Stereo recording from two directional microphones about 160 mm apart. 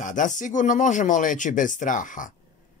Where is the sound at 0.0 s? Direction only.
55° left (ahead or behind).